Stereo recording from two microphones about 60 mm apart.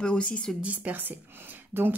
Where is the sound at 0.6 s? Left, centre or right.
Right.